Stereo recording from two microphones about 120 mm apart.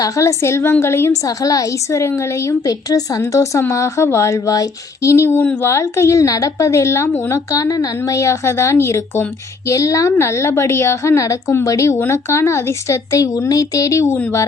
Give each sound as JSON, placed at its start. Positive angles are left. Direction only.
{"t": 0.0, "sound": "a woman's voice", "side_deg": 25}